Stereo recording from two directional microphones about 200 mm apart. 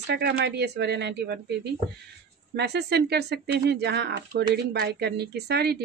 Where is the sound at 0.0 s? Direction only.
55° right (ahead or behind).